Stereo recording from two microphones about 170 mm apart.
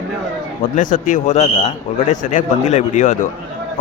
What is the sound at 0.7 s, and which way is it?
A man's voice, 50° left (ahead or behind).